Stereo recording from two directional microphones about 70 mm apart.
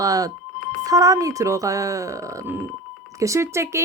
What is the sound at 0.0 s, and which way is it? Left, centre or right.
A woman's voice, right.